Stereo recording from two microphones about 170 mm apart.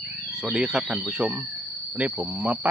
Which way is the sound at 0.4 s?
5° right (ahead or behind).